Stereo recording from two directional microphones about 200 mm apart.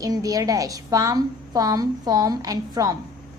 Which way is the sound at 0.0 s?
15° right (ahead or behind).